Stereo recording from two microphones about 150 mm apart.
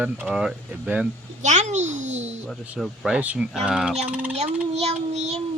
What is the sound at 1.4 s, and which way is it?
Speech, 50° right (ahead or behind).